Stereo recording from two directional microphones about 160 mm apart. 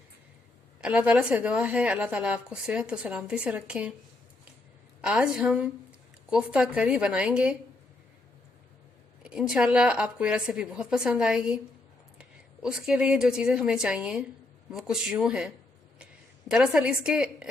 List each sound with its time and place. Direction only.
0.8 s a woman's voice: 5° right (ahead or behind)
4.9 s a woman's voice: 5° right (ahead or behind)
9.2 s a woman's voice: 5° right (ahead or behind)
12.6 s a woman's voice: 5° right (ahead or behind)